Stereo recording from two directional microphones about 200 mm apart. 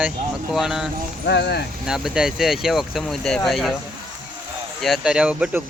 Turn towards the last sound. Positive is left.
turn(degrees=-5)  # may be behind; listen again after turning